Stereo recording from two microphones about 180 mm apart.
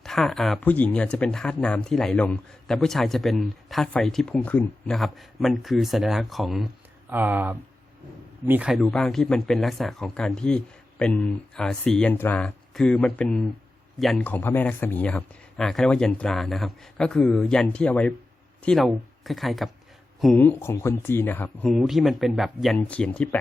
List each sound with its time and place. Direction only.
0.0 s speech: centre (ahead or behind)